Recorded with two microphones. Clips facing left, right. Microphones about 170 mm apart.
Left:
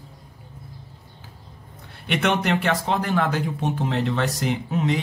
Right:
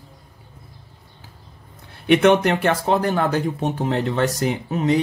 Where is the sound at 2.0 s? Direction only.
50° right (ahead or behind).